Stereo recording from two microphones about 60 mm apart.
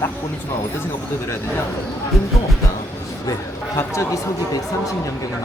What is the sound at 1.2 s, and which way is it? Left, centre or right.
Speech, left.